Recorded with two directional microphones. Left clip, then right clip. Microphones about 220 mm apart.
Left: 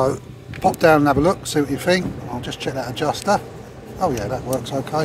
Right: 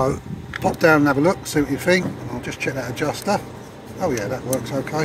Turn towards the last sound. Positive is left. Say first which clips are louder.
# left 1 dB
turn(degrees=0)  # may be behind; listen again after turning